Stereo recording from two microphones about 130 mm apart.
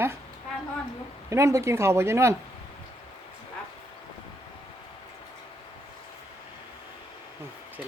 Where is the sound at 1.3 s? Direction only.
20° right (ahead or behind).